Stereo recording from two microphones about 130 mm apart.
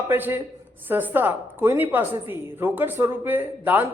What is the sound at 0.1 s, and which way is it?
A woman's voice, 15° right (ahead or behind).